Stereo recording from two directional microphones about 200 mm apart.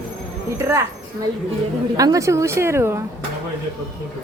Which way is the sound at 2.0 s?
15° right (ahead or behind).